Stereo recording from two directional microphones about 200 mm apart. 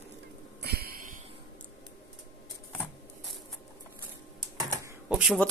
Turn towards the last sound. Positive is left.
turn(degrees=-5)  # may be behind; listen again after turning